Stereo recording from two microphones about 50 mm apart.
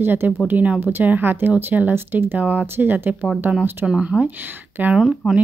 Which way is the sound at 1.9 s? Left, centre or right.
Right.